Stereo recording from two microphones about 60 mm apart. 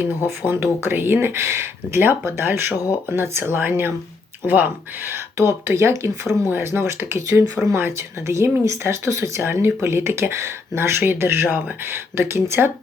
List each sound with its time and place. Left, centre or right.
0.3 s speech: right
5.1 s speech: right
9.5 s speech: right